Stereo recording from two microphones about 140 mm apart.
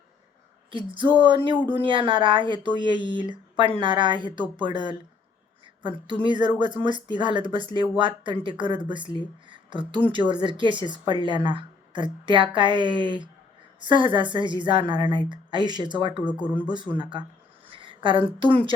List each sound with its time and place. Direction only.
0.9 s speech: 35° right (ahead or behind)
6.2 s speech: 35° right (ahead or behind)
16.2 s speech: 10° right (ahead or behind)
17.0 s speech: 35° right (ahead or behind)
17.7 s a sound: 35° right (ahead or behind)
18.3 s speech: 35° right (ahead or behind)